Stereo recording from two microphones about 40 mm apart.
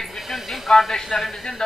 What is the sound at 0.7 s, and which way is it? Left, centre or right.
Speech, centre.